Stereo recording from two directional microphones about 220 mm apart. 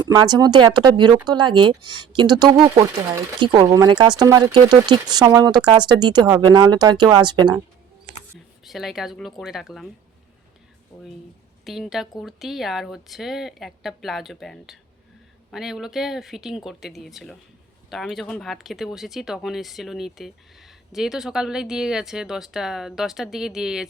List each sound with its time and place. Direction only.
0.1 s speech: 20° right (ahead or behind)
8.6 s speech: centre (ahead or behind)
11.6 s a woman's voice: centre (ahead or behind)